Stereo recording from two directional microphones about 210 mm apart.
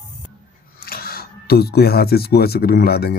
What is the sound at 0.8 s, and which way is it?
Speech, 45° left (ahead or behind).